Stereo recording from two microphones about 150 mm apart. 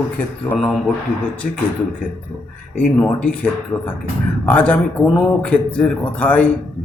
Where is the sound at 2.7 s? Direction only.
10° left (ahead or behind).